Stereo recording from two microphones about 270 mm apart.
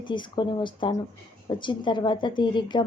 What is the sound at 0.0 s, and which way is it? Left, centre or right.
A woman's voice, centre.